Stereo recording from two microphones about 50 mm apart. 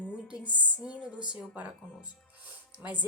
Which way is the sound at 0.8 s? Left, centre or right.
Centre.